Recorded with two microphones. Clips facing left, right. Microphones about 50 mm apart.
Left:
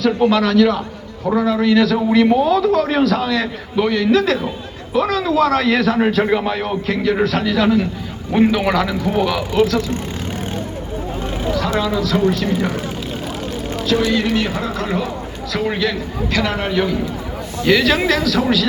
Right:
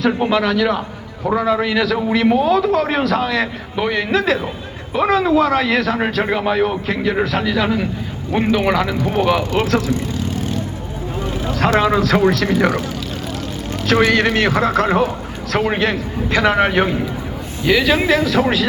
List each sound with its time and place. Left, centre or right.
0.0 s a man's voice: centre
9.6 s a man's voice: right
11.5 s speech: right
12.2 s speech: right
14.0 s a man's voice: right
15.8 s a man's voice: right
16.6 s speech: right
17.6 s a man's voice: centre
18.3 s speech: right